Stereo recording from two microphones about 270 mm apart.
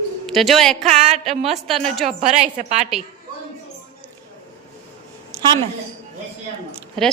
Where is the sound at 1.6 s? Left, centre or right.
Centre.